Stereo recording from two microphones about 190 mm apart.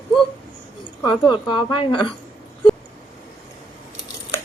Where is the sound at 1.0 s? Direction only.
25° left (ahead or behind).